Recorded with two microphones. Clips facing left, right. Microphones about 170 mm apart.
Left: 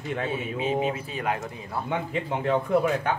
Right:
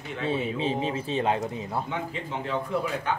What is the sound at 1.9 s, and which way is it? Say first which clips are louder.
A man's voice: left 4 dB; 55° left (ahead or behind).